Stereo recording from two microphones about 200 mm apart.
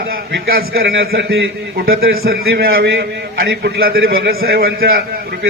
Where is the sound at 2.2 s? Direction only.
50° right (ahead or behind).